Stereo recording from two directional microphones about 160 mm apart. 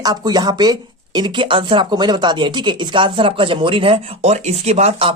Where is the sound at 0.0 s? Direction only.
25° right (ahead or behind).